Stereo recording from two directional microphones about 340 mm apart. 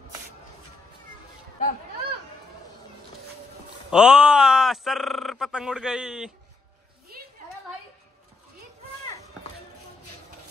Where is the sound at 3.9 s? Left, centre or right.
Centre.